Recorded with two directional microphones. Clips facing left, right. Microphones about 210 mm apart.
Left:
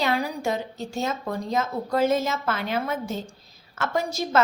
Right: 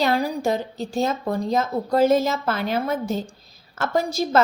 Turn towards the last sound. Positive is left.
turn(degrees=-35)  # may be behind; listen again after turning